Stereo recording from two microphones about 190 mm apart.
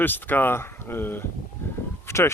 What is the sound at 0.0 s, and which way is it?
Speech, 10° left (ahead or behind).